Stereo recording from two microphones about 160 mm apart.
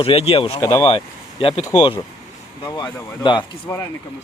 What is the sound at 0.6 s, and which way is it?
Speech, 15° left (ahead or behind).